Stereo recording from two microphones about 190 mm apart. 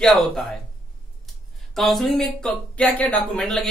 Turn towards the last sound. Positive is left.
turn(degrees=5)  # may be behind; listen again after turning